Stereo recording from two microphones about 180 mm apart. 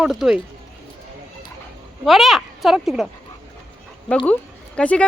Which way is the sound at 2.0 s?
Centre (ahead or behind).